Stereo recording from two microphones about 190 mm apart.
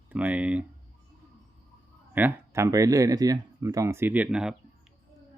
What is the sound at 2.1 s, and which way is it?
Speech, 10° right (ahead or behind).